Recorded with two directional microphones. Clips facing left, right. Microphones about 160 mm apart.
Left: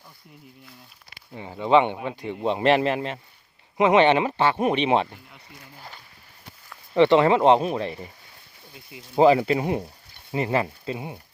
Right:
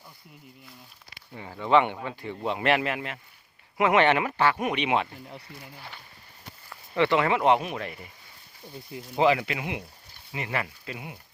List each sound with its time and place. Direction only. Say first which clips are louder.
1.3 s speech: left 3 dB; 15° left (ahead or behind)
6.9 s speech: left 6 dB; 25° left (ahead or behind)
9.1 s speech: left 6 dB; 35° left (ahead or behind)